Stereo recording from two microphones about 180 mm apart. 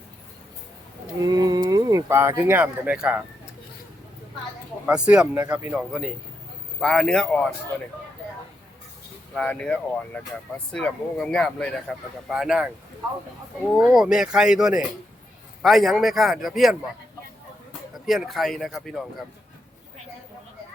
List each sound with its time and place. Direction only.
1.2 s speech: 20° right (ahead or behind)
4.9 s a man's voice: 5° right (ahead or behind)
9.3 s a man's voice: 5° left (ahead or behind)
13.7 s a man's voice: 5° right (ahead or behind)
18.0 s a man's voice: centre (ahead or behind)